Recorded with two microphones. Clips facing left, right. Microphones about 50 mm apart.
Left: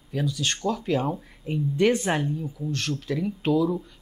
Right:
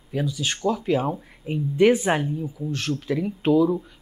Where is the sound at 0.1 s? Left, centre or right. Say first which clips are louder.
Right 1 dB; centre.